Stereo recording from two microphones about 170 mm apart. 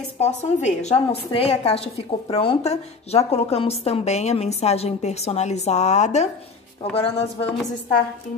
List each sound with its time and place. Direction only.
0.2 s a woman's voice: 40° left (ahead or behind)